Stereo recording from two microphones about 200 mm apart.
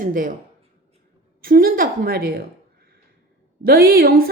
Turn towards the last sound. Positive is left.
turn(degrees=-50)  # may be behind; listen again after turning